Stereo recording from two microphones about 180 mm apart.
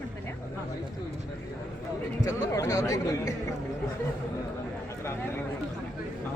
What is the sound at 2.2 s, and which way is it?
Speech, 20° left (ahead or behind).